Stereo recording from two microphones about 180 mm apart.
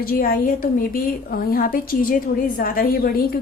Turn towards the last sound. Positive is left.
turn(degrees=55)  # may be behind; listen again after turning